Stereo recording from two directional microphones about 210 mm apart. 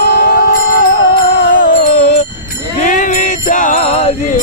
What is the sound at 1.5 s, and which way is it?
Music, 40° left (ahead or behind).